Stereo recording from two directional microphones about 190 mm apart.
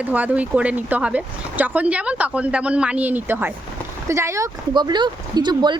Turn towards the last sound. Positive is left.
turn(degrees=-25)  # may be behind; listen again after turning